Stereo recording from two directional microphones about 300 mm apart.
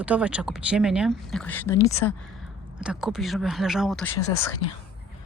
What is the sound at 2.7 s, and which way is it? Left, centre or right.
Speech, centre.